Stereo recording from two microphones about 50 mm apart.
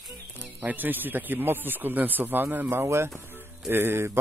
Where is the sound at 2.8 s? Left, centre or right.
Right.